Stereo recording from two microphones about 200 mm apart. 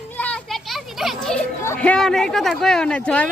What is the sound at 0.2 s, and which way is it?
Children playing, 5° left (ahead or behind).